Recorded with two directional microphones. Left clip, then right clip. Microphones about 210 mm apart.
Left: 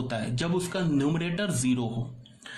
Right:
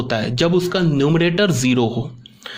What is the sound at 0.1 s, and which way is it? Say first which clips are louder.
A man's voice: right 14 dB; 40° right (ahead or behind).